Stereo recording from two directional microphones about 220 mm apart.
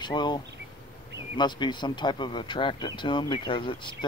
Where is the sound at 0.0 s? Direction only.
20° left (ahead or behind).